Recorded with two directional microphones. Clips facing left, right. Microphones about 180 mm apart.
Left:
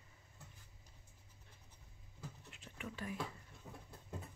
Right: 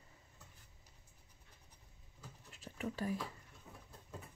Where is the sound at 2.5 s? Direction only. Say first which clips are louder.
Right 8 dB; 40° right (ahead or behind).